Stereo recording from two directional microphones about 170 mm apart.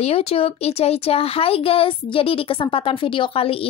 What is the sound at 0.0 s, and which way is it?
Speech, 35° left (ahead or behind).